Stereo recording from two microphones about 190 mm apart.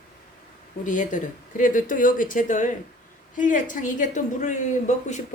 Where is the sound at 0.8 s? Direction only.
45° left (ahead or behind).